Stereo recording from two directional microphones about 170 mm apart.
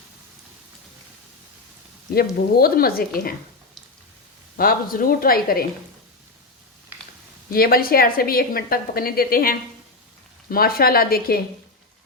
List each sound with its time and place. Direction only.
2.1 s a woman's voice: 60° left (ahead or behind)
4.5 s a woman's voice: 60° left (ahead or behind)
7.5 s a woman's voice: 60° left (ahead or behind)